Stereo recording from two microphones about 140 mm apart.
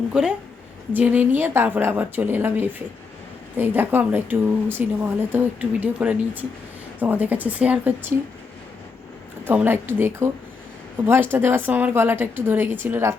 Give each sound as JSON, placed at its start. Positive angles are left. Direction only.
{"t": 0.1, "sound": "a woman's voice", "side_deg": -5}
{"t": 9.5, "sound": "a woman's voice", "side_deg": -15}